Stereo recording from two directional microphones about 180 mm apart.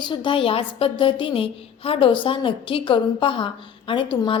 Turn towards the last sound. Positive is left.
turn(degrees=25)  # may be behind; listen again after turning